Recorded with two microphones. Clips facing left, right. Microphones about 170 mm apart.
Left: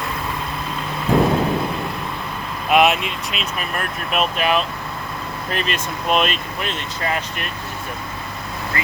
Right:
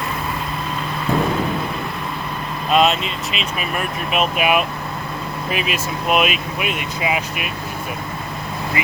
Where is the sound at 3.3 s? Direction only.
5° right (ahead or behind).